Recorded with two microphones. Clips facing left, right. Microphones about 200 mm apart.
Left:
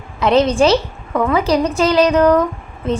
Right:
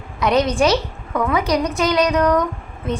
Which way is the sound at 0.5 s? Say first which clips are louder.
Left 4 dB; centre (ahead or behind).